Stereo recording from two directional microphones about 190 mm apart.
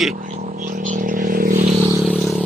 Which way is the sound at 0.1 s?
45° right (ahead or behind).